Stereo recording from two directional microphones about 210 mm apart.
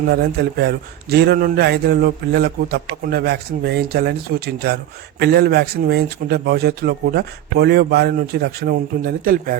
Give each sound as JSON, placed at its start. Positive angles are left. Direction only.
{"t": 0.0, "sound": "a man's voice", "side_deg": -50}